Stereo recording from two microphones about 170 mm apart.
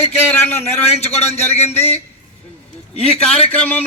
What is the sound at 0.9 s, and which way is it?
A man's voice, 40° left (ahead or behind).